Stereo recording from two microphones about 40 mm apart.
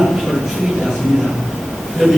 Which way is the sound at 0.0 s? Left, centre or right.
Centre.